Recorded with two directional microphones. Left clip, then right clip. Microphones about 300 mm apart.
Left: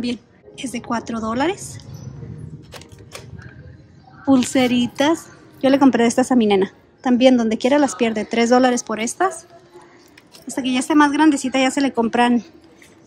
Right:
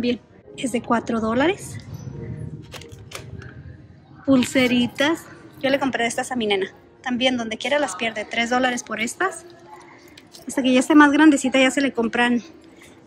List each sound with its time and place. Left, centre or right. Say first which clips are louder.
0.0 s a woman's voice: right 3 dB; centre
4.3 s a woman's voice: left 2 dB; centre
10.5 s speech: right 2 dB; centre